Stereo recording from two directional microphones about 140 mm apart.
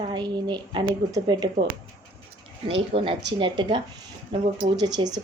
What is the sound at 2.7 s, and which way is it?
A woman's voice, 40° right (ahead or behind).